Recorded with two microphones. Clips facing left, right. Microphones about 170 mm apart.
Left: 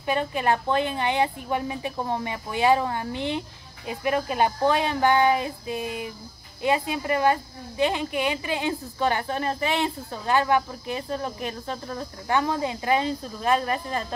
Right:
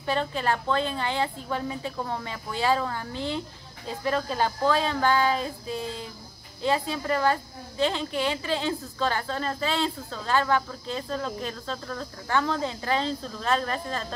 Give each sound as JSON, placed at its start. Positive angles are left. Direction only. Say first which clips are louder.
{"t": 0.0, "sound": "a woman's voice", "louder": "left 2 dB", "side_deg": 15}